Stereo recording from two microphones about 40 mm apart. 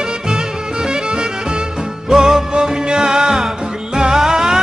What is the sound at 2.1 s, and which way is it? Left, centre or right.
Music, centre.